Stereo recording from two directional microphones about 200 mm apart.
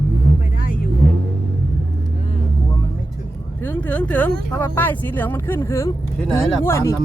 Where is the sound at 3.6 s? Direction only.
10° left (ahead or behind).